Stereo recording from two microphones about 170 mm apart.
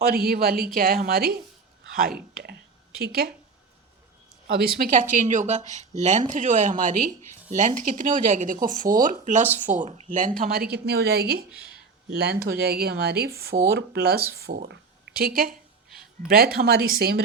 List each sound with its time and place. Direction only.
0.0 s speech: 65° right (ahead or behind)
2.3 s a sound: 65° right (ahead or behind)
3.0 s speech: 65° right (ahead or behind)
4.8 s speech: 50° right (ahead or behind)
15.9 s a sound: centre (ahead or behind)
16.3 s speech: 65° right (ahead or behind)